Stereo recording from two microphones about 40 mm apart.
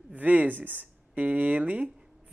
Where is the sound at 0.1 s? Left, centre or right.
Right.